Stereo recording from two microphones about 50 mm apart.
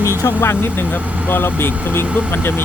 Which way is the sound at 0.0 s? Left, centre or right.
Left.